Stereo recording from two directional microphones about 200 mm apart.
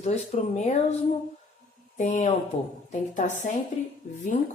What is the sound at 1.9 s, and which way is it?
A woman's voice, 35° left (ahead or behind).